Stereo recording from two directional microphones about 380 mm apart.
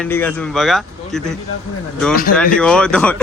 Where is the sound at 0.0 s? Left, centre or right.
Centre.